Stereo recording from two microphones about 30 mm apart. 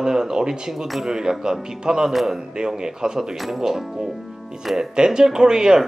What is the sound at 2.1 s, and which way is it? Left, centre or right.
Speech, centre.